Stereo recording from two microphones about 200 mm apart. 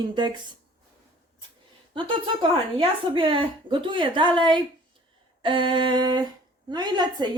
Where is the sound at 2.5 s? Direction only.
25° right (ahead or behind).